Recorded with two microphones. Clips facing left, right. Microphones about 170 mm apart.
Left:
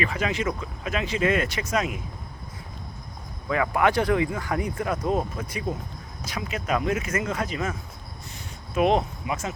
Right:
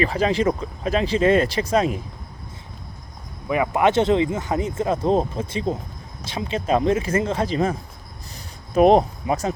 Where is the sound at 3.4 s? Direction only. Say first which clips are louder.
Right 3 dB; 20° right (ahead or behind).